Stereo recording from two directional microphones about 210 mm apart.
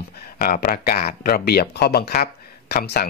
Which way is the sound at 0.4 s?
45° left (ahead or behind).